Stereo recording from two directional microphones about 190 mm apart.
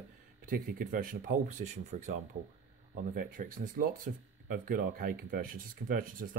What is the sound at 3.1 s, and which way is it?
Speech, 45° right (ahead or behind).